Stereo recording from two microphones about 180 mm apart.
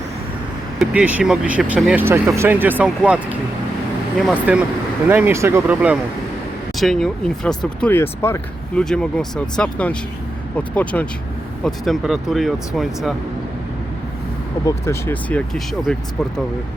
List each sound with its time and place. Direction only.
0.8 s speech: 5° right (ahead or behind)
14.6 s speech: 15° left (ahead or behind)